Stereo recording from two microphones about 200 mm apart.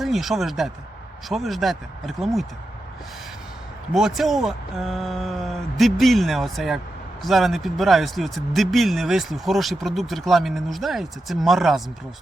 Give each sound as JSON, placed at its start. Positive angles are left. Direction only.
{"t": 0.0, "sound": "speech", "side_deg": 0}
{"t": 3.9, "sound": "speech", "side_deg": 0}